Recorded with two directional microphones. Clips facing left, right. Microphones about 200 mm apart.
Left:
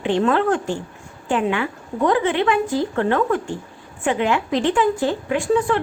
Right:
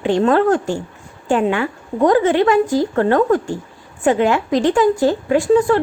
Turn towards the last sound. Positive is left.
turn(degrees=-40)  # may be behind; listen again after turning